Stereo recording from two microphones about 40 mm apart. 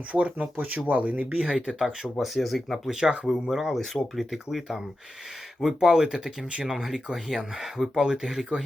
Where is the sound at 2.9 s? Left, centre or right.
Centre.